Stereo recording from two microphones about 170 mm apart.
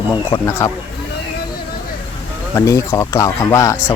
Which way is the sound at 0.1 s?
15° left (ahead or behind).